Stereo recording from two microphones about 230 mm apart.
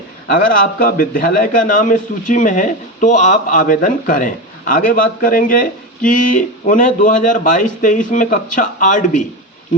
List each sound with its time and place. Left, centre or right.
0.8 s a man's voice: left